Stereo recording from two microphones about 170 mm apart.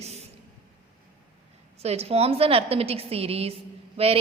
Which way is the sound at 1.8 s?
35° right (ahead or behind).